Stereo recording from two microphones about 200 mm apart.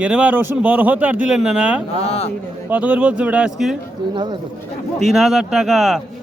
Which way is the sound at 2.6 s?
5° right (ahead or behind).